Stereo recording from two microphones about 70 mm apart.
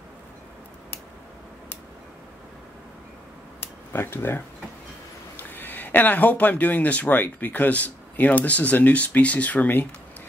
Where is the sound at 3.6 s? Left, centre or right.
Left.